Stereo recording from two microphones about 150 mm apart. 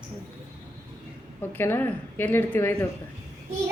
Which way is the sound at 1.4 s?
15° left (ahead or behind).